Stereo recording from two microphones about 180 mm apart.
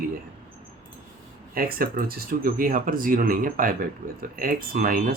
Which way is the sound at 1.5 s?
55° right (ahead or behind).